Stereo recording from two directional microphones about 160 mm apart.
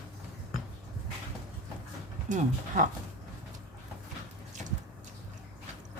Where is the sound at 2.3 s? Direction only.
55° right (ahead or behind).